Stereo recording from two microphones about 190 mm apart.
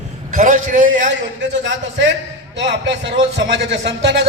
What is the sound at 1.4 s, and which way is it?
A man's voice, 70° right (ahead or behind).